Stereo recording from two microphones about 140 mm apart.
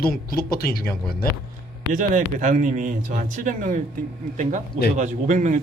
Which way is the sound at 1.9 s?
65° right (ahead or behind).